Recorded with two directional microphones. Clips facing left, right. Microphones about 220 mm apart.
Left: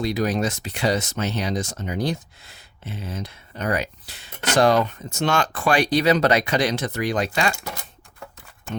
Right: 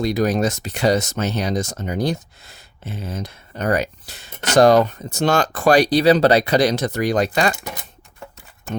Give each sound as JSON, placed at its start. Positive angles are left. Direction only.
{"t": 0.0, "sound": "speech", "side_deg": -45}
{"t": 8.7, "sound": "speech", "side_deg": -40}